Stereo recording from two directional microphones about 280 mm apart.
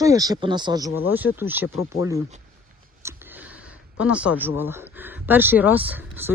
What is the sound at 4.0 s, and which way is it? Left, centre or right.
Speech, centre.